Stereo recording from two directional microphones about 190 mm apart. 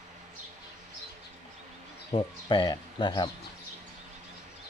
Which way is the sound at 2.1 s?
25° left (ahead or behind).